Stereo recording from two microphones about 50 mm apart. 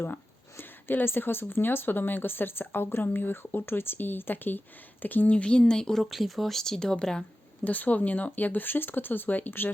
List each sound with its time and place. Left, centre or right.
0.0 s speech: left
5.4 s speech: centre
6.0 s speech: centre
7.6 s speech: left